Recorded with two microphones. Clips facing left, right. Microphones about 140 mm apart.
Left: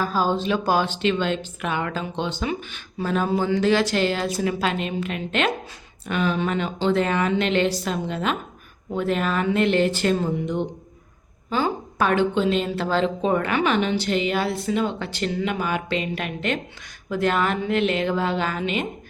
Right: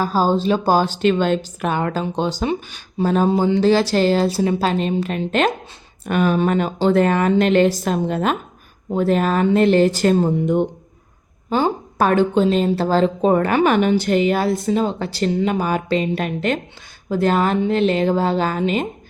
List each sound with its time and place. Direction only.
0.0 s speech: 35° right (ahead or behind); by 10.7 s 50° right (ahead or behind)
11.4 s speech: 35° right (ahead or behind)